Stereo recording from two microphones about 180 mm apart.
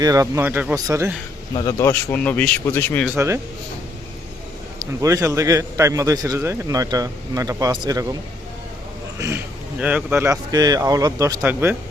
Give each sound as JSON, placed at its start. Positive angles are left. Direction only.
{"t": 0.0, "sound": "speech", "side_deg": -20}
{"t": 1.5, "sound": "speech", "side_deg": 20}
{"t": 1.9, "sound": "speech", "side_deg": 10}
{"t": 3.2, "sound": "speech", "side_deg": -15}
{"t": 4.8, "sound": "a man's voice", "side_deg": -20}
{"t": 9.1, "sound": "speech", "side_deg": -15}